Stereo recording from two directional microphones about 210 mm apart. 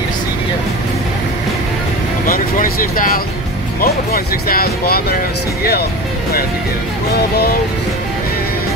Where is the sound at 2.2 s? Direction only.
40° left (ahead or behind).